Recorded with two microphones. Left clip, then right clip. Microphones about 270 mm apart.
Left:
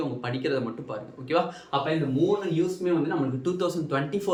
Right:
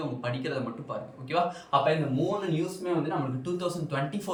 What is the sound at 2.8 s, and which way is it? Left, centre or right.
A man's voice, centre.